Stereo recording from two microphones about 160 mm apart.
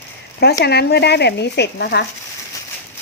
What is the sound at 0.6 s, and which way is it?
Speech, 90° left.